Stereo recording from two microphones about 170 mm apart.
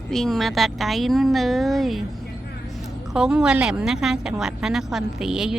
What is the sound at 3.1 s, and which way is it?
A woman's voice, 5° right (ahead or behind).